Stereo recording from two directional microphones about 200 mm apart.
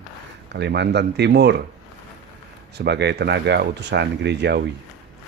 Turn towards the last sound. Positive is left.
turn(degrees=-55)  # may be behind; listen again after turning